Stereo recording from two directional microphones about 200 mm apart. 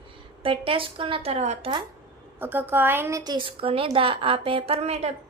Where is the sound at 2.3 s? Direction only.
10° right (ahead or behind).